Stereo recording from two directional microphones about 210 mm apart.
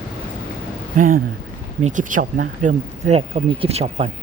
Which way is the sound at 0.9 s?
40° right (ahead or behind).